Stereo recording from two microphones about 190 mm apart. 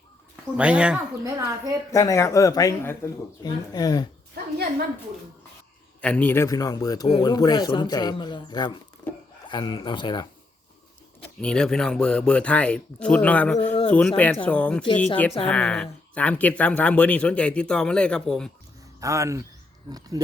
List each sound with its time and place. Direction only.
0.5 s speech: 5° right (ahead or behind)
1.2 s speech: 15° right (ahead or behind)
1.9 s speech: 15° left (ahead or behind)
6.0 s speech: 5° left (ahead or behind); by 10.2 s 25° left (ahead or behind)
11.2 s a man's voice: 5° left (ahead or behind)
18.9 s speech: 15° right (ahead or behind)